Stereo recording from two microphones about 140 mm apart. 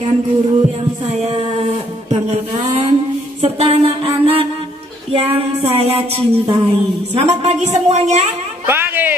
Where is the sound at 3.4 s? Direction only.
45° right (ahead or behind).